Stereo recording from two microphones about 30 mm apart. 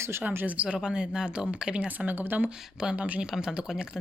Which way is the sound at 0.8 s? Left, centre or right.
Right.